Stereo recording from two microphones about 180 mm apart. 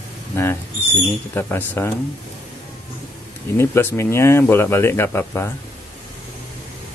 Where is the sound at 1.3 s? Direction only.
10° left (ahead or behind).